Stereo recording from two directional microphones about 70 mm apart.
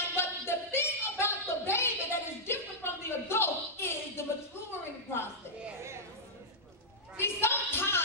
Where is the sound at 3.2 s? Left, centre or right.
Left.